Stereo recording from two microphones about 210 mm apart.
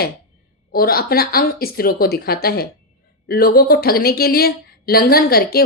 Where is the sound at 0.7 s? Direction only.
45° left (ahead or behind).